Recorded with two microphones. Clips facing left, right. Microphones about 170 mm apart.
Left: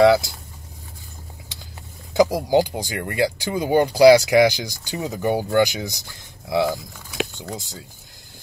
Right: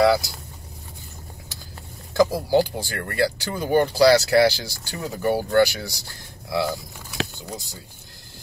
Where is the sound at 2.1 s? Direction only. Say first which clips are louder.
Left 2 dB; 15° left (ahead or behind).